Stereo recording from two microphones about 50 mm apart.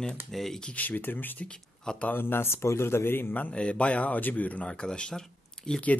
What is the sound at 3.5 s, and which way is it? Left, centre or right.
Speech, left.